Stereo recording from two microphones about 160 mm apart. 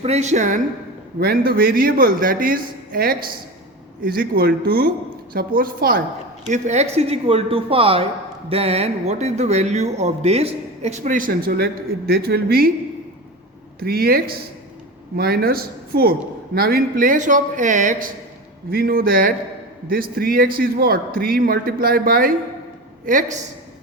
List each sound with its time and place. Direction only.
0.0 s speech: 45° right (ahead or behind)
1.2 s a man's voice: 70° right (ahead or behind)
6.4 s a woman's voice: 45° right (ahead or behind); by 12.7 s 75° right (ahead or behind)
13.7 s speech: 70° right (ahead or behind); by 18.1 s 55° right (ahead or behind)
18.7 s a man's voice: 65° right (ahead or behind)